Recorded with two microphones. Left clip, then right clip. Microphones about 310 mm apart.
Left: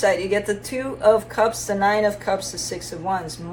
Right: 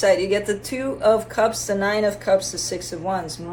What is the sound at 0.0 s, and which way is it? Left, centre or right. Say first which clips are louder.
Speech: right 2 dB; centre.